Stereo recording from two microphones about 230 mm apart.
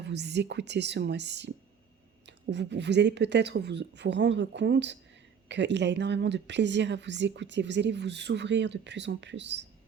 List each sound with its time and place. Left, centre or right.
0.0 s speech: right